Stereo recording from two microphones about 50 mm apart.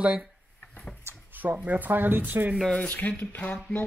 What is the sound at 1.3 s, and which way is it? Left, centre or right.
Speech, right.